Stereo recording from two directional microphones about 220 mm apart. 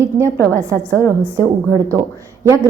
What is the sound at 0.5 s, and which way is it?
Speech, 15° right (ahead or behind).